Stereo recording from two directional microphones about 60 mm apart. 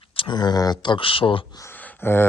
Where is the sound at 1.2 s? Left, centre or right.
Left.